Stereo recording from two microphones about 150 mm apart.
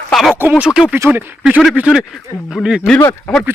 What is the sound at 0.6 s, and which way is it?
Speech, 5° right (ahead or behind).